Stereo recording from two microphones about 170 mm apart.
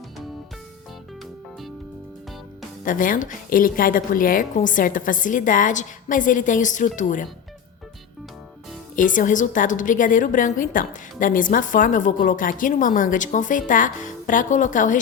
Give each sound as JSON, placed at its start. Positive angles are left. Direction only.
{"t": 2.8, "sound": "a woman's voice", "side_deg": 50}
{"t": 9.0, "sound": "a woman's voice", "side_deg": 50}